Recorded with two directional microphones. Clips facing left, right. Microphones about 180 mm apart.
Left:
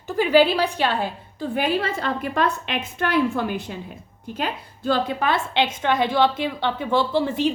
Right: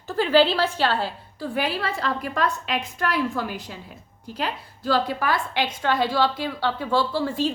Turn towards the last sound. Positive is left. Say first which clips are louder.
# left 3 dB
turn(degrees=20)  # may be behind; listen again after turning